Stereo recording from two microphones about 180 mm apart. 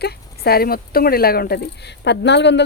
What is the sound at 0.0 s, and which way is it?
Speech, 60° left (ahead or behind).